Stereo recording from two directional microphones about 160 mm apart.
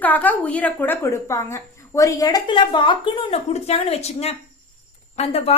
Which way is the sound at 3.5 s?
40° left (ahead or behind).